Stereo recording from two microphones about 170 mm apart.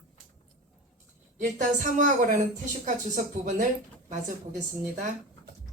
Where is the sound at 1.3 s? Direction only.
50° right (ahead or behind).